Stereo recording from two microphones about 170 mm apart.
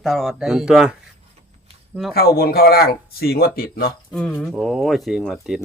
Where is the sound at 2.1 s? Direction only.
65° left (ahead or behind).